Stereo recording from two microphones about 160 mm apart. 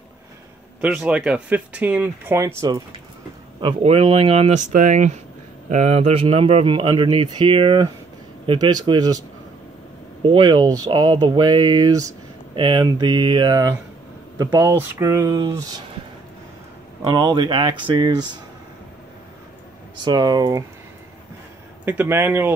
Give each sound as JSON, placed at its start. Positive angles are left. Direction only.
{"t": 0.7, "sound": "speech", "side_deg": -10}
{"t": 3.6, "sound": "speech", "side_deg": -35}
{"t": 4.6, "sound": "speech", "side_deg": -50}
{"t": 10.2, "sound": "speech", "side_deg": -30}
{"t": 17.1, "sound": "speech", "side_deg": -25}
{"t": 20.1, "sound": "speech", "side_deg": -25}
{"t": 21.8, "sound": "speech", "side_deg": -15}